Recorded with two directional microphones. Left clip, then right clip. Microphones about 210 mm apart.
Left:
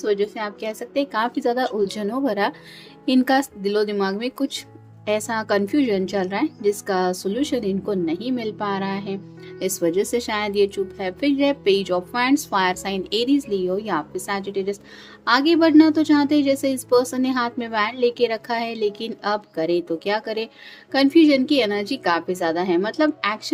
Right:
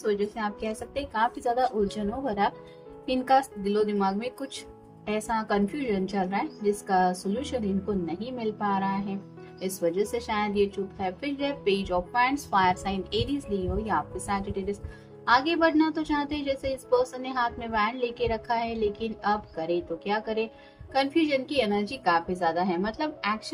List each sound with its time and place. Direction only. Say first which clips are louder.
0.0 s a woman's voice: left 5 dB; 55° left (ahead or behind)